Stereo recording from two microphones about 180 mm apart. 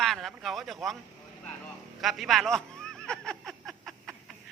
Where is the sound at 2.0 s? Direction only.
Centre (ahead or behind).